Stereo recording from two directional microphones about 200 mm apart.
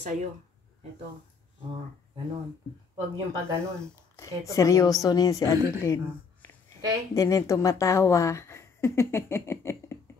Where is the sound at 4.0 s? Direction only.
15° left (ahead or behind).